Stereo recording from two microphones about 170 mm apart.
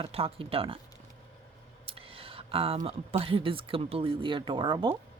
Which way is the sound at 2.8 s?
35° right (ahead or behind).